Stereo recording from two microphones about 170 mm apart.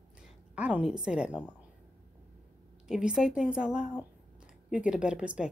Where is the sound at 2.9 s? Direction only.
5° right (ahead or behind).